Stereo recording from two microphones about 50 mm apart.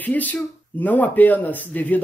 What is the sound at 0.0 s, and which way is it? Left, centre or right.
Speech, left.